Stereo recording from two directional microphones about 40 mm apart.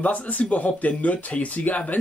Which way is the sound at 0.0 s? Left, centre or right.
Left.